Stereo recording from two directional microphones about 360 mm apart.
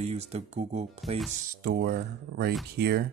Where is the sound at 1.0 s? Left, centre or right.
Centre.